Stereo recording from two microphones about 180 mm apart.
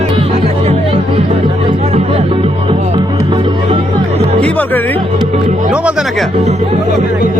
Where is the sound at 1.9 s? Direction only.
35° right (ahead or behind).